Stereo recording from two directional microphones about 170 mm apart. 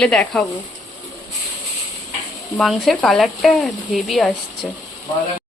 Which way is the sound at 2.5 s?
Centre (ahead or behind).